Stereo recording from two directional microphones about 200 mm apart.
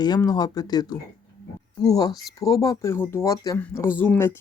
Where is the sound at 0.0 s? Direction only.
20° left (ahead or behind).